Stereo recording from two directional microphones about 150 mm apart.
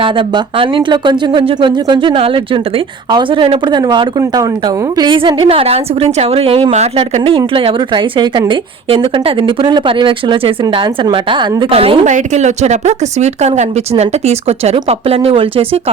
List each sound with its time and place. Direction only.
0.0 s speech: 35° right (ahead or behind)
12.1 s speech: 50° right (ahead or behind)